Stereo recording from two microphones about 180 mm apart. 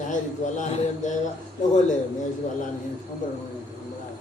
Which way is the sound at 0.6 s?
40° left (ahead or behind).